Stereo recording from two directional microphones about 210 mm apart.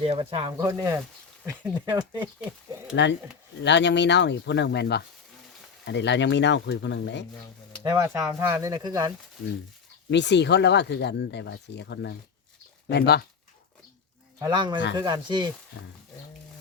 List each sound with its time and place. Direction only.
0.0 s speech: 25° right (ahead or behind)
2.9 s speech: 55° left (ahead or behind)
7.9 s speech: 15° right (ahead or behind)
10.1 s speech: 55° left (ahead or behind)
14.4 s speech: 20° right (ahead or behind)